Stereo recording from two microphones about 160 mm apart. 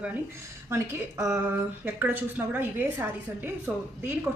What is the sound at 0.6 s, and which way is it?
A woman's voice, 20° right (ahead or behind).